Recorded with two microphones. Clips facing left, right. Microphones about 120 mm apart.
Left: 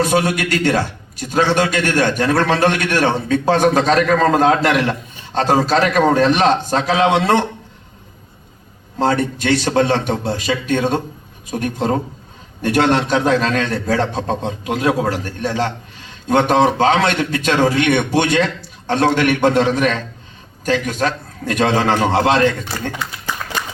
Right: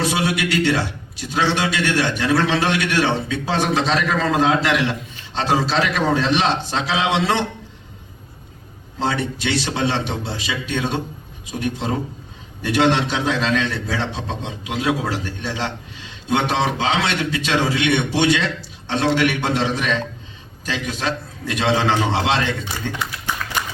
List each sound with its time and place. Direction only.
0.0 s a man's voice: 45° left (ahead or behind)
9.0 s a man's voice: 45° left (ahead or behind)